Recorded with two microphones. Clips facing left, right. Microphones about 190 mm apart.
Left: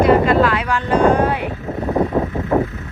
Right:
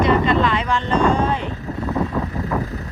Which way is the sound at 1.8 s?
35° left (ahead or behind).